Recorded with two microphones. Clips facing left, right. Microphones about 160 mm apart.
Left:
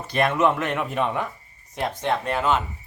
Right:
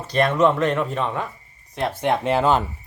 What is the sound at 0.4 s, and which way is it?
Speech, 10° left (ahead or behind).